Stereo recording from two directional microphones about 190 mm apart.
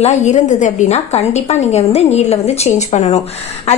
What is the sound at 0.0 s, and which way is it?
A woman's voice, 40° left (ahead or behind).